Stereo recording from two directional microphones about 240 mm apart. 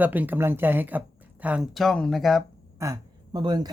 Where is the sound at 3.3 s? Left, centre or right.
Centre.